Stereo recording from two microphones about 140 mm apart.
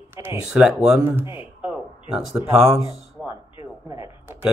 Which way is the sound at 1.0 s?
15° right (ahead or behind).